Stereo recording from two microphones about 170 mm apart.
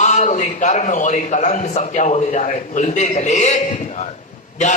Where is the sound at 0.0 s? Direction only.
45° left (ahead or behind).